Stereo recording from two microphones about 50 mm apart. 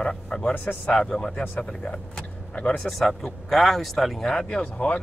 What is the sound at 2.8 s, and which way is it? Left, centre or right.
Speech, centre.